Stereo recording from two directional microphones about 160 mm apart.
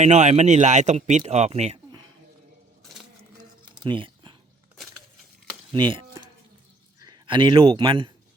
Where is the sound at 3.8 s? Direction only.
30° right (ahead or behind).